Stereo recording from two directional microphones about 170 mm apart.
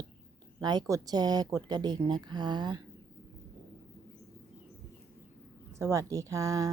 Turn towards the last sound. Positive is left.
turn(degrees=-20)  # may be behind; listen again after turning